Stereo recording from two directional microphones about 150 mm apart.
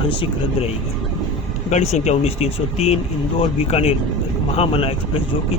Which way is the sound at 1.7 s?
50° left (ahead or behind).